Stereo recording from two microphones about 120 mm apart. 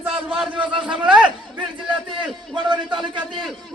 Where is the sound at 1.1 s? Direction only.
10° right (ahead or behind).